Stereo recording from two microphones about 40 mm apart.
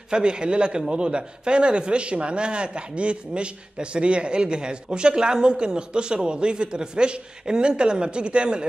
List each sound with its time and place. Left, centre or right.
0.1 s a man's voice: right